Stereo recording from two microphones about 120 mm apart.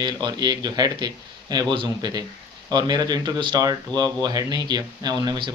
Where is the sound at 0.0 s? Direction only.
35° right (ahead or behind).